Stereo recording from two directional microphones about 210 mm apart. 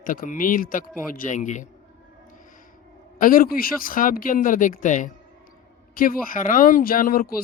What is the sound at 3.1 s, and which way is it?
Speech, 40° left (ahead or behind).